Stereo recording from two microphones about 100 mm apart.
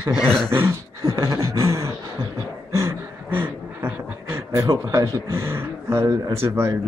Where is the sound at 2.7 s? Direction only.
25° right (ahead or behind).